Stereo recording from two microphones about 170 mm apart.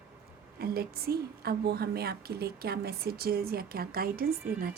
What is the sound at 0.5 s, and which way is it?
A woman's voice, 65° right (ahead or behind).